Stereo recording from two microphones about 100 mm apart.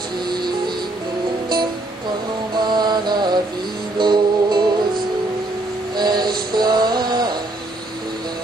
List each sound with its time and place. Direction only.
2.5 s music: 45° right (ahead or behind)
5.9 s music: 45° right (ahead or behind)